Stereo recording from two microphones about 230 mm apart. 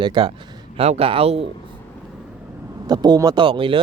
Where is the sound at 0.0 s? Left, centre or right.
Centre.